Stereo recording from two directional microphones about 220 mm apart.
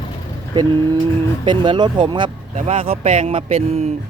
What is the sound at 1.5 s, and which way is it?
Speech, 20° right (ahead or behind).